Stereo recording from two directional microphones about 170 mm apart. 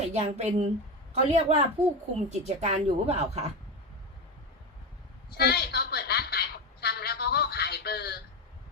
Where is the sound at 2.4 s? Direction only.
40° right (ahead or behind).